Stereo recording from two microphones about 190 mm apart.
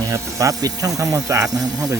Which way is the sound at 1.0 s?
15° right (ahead or behind).